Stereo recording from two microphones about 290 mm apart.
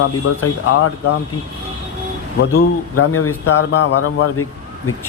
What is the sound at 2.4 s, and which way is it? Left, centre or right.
Speech, left.